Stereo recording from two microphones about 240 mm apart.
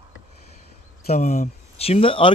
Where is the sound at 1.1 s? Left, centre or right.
Left.